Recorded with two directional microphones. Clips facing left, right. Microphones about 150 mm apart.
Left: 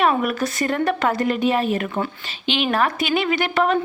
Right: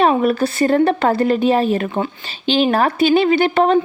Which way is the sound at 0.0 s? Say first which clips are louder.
Right 5 dB; 30° right (ahead or behind).